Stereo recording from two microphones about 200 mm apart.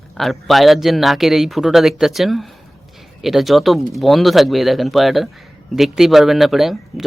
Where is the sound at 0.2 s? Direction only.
Centre (ahead or behind).